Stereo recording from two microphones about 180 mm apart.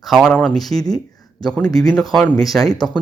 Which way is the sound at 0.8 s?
20° left (ahead or behind).